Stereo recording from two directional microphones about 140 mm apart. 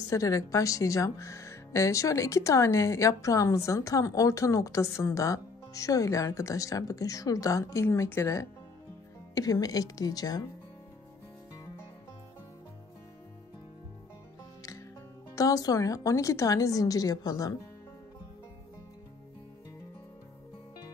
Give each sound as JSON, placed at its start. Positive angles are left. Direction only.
{"t": 0.1, "sound": "speech", "side_deg": 25}
{"t": 15.3, "sound": "speech", "side_deg": 25}